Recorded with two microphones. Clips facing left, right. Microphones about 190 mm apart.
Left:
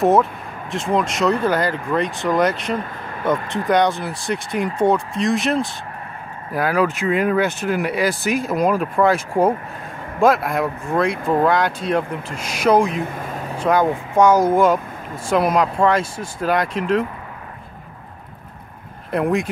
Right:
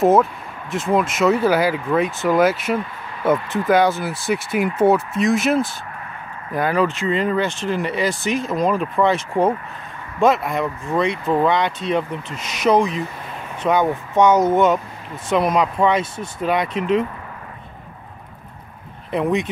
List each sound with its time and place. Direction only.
0.0 s speech: centre (ahead or behind)
12.9 s a sound: 50° left (ahead or behind)
13.7 s speech: centre (ahead or behind)